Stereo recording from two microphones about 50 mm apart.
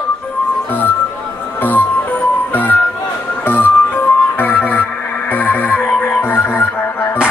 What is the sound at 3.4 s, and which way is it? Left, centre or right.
Music, left.